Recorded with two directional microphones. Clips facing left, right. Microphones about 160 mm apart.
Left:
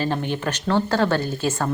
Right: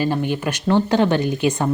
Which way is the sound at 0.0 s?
10° right (ahead or behind).